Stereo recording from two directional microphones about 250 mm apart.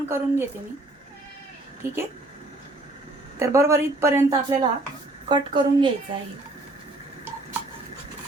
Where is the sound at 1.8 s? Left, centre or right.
Centre.